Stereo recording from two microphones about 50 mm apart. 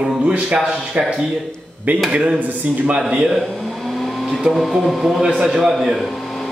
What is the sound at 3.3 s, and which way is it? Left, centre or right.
Speech, centre.